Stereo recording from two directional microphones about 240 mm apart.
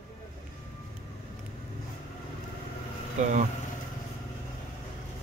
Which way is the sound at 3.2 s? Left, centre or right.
Right.